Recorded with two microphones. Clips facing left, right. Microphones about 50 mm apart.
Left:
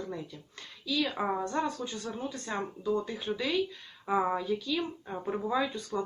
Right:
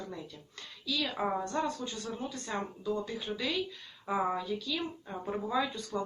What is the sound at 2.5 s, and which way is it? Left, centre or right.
A woman's voice, centre.